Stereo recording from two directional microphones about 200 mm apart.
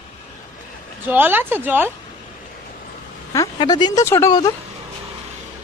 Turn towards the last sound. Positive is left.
turn(degrees=20)  # may be behind; listen again after turning